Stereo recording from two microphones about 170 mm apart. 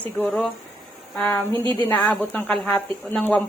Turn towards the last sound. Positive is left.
turn(degrees=5)  # may be behind; listen again after turning